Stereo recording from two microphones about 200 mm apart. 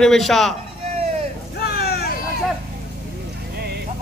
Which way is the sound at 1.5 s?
50° left (ahead or behind).